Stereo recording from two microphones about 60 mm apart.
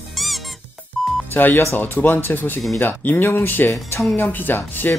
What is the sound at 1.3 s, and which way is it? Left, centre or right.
Speech, left.